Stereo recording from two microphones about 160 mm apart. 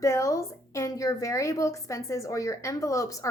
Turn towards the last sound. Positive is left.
turn(degrees=20)  # may be behind; listen again after turning